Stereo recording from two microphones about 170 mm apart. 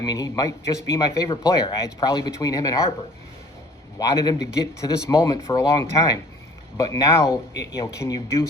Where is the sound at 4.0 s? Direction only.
20° left (ahead or behind).